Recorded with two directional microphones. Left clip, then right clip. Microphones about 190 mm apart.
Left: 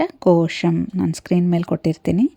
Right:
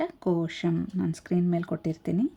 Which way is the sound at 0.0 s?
45° left (ahead or behind).